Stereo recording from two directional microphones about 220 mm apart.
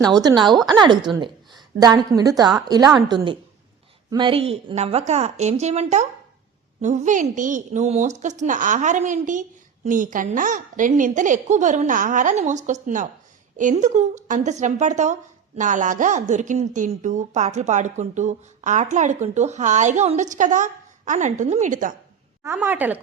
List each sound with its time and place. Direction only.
0.0 s a woman's voice: 20° right (ahead or behind); by 21.9 s 35° right (ahead or behind)
22.4 s a woman's voice: 10° right (ahead or behind)